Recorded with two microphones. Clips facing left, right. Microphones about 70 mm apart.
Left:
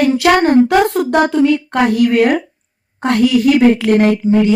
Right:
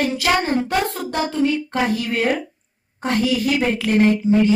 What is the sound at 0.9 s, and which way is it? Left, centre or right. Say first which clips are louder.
A woman's voice: left 10 dB; left.